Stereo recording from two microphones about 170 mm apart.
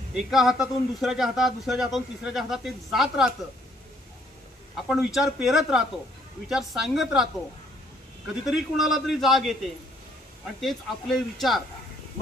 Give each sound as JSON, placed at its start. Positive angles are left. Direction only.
{"t": 0.1, "sound": "a man's voice", "side_deg": 0}
{"t": 4.7, "sound": "a man's voice", "side_deg": 0}
{"t": 8.5, "sound": "a man's voice", "side_deg": 0}
{"t": 10.6, "sound": "a man's voice", "side_deg": 0}